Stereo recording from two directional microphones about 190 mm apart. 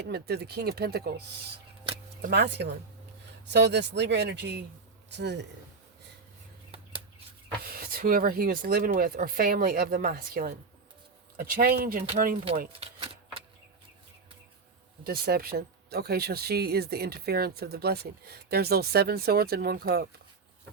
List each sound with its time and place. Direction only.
0.0 s speech: 55° right (ahead or behind)
2.3 s speech: 60° right (ahead or behind)
7.6 s speech: 50° right (ahead or behind)
12.8 s a sound: 30° right (ahead or behind)
15.0 s speech: 55° right (ahead or behind)